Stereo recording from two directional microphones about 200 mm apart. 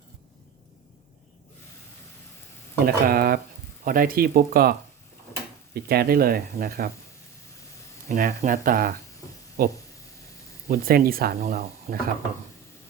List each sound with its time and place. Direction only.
2.7 s speech: 50° right (ahead or behind)
5.7 s speech: 50° right (ahead or behind)
8.1 s speech: 40° right (ahead or behind)